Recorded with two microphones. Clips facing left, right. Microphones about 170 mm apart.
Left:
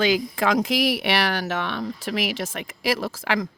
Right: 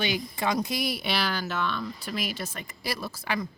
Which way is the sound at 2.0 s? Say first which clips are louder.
Left 6 dB; 90° left.